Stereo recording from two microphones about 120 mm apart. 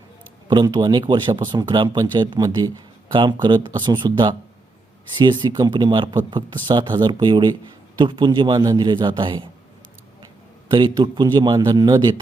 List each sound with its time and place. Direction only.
0.4 s speech: 35° right (ahead or behind)
10.7 s speech: 40° right (ahead or behind)